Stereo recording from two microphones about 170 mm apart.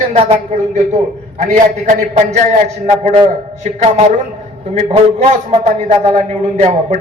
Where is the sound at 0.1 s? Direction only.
40° right (ahead or behind).